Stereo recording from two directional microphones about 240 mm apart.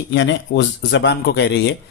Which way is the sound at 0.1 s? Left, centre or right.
Left.